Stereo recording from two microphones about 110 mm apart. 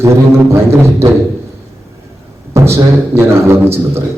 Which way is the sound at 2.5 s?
25° right (ahead or behind).